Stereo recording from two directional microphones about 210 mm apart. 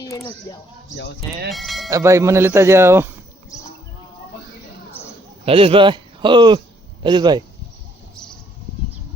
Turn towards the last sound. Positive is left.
turn(degrees=-20)  # may be behind; listen again after turning